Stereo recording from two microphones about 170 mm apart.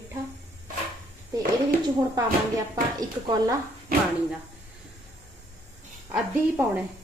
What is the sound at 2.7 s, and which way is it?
Speech, 20° right (ahead or behind).